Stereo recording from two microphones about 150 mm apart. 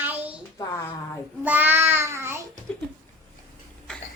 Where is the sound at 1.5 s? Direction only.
10° right (ahead or behind).